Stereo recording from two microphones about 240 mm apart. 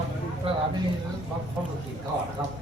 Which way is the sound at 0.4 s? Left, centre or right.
Right.